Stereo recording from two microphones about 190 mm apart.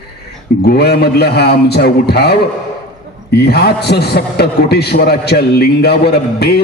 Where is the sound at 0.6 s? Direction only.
55° left (ahead or behind).